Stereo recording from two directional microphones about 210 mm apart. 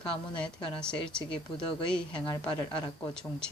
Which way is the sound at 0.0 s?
5° left (ahead or behind).